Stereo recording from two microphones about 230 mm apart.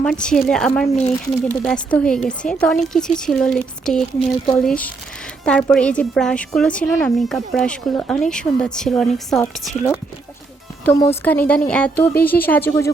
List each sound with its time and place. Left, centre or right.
0.0 s a woman's voice: centre
0.9 s speech: left
1.2 s a woman's voice: centre
10.8 s a woman's voice: centre